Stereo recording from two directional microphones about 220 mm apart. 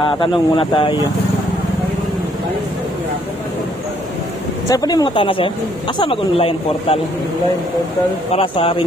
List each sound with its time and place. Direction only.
0.0 s speech: 25° left (ahead or behind)
4.6 s speech: 15° left (ahead or behind)
8.3 s speech: 25° left (ahead or behind)